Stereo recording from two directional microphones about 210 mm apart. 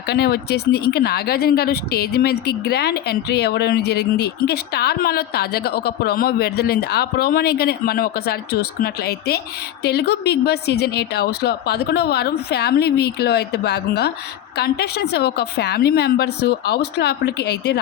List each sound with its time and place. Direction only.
0.1 s a woman's voice: 50° left (ahead or behind)